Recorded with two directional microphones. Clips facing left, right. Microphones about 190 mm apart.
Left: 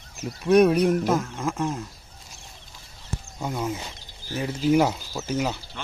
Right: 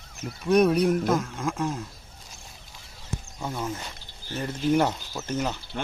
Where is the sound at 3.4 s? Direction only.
10° left (ahead or behind).